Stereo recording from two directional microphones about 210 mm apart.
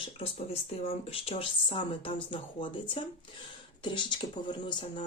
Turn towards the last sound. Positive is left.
turn(degrees=20)  # may be behind; listen again after turning